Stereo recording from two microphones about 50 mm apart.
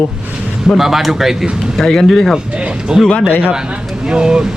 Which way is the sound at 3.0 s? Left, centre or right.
Left.